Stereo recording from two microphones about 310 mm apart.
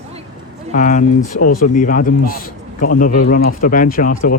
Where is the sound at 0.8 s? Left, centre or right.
Left.